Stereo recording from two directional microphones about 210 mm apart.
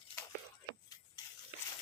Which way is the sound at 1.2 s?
20° left (ahead or behind).